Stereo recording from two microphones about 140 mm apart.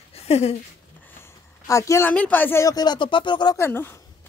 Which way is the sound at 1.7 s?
20° left (ahead or behind).